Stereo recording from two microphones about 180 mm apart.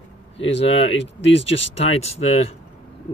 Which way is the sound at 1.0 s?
90° left.